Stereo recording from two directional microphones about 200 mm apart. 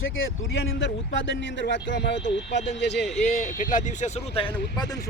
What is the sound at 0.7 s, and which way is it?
Speech, 65° left (ahead or behind).